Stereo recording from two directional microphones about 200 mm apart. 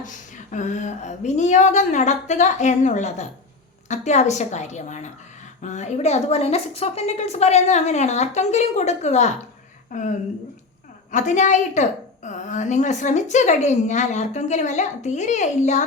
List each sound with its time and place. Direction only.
0.0 s a woman's voice: 40° left (ahead or behind)